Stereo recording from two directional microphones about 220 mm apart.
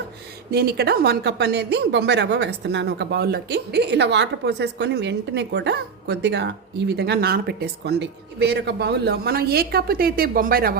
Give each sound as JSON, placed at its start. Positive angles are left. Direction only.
{"t": 0.5, "sound": "a woman's voice", "side_deg": -45}